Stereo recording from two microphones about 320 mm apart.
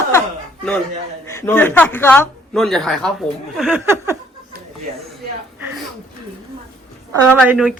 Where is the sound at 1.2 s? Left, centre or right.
Centre.